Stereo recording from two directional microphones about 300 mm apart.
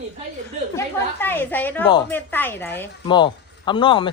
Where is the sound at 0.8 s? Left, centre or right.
Centre.